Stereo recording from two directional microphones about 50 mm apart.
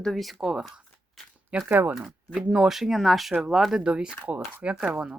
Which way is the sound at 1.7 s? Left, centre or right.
Right.